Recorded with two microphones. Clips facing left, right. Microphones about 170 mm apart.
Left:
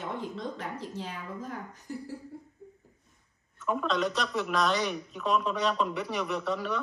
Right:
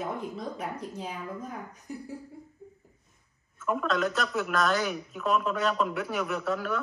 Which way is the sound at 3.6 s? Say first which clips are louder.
Right 1 dB; centre (ahead or behind).